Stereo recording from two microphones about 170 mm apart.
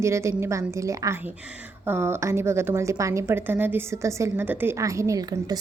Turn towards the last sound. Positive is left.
turn(degrees=-20)  # may be behind; listen again after turning